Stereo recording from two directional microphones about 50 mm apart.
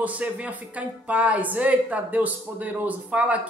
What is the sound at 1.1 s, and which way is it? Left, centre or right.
A woman's voice, right.